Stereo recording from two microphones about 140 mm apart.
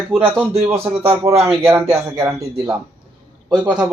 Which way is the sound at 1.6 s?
20° right (ahead or behind).